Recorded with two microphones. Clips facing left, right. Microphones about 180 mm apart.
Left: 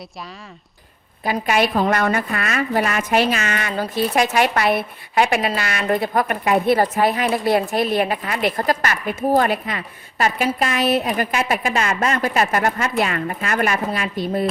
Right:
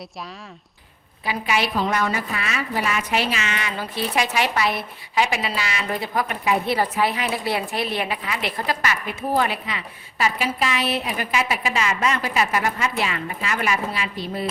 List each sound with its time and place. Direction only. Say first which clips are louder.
1.2 s a woman's voice: left 5 dB; 50° left (ahead or behind)